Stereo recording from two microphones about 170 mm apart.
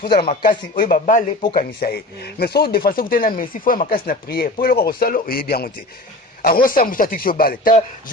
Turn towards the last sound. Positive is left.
turn(degrees=60)  # may be behind; listen again after turning